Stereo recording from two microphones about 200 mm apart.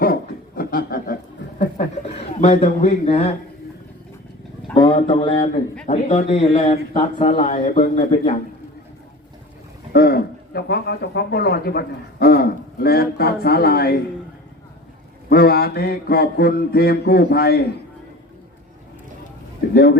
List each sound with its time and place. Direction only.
0.0 s a sound: 45° left (ahead or behind)
2.4 s a man's voice: 35° left (ahead or behind)
4.8 s a man's voice: 25° left (ahead or behind)
7.9 s a man's voice: 30° left (ahead or behind)
9.9 s a man's voice: 50° left (ahead or behind)
15.3 s a man's voice: 50° left (ahead or behind)
19.7 s a man's voice: 50° left (ahead or behind)